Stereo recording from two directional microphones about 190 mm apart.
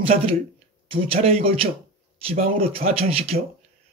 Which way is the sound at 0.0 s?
30° right (ahead or behind).